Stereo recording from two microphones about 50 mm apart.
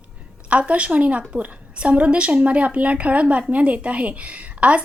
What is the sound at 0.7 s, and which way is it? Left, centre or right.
A woman's voice, right.